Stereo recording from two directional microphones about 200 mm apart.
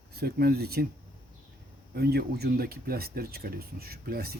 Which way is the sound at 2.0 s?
50° right (ahead or behind).